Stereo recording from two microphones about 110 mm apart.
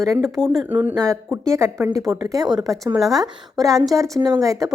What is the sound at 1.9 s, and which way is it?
A woman's voice, 35° right (ahead or behind).